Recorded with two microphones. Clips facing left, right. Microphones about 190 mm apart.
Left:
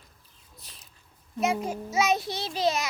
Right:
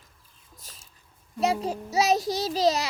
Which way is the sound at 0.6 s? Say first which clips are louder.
Right 4 dB; 45° right (ahead or behind).